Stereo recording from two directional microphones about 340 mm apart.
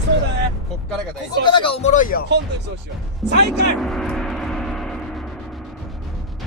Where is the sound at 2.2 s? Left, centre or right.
Right.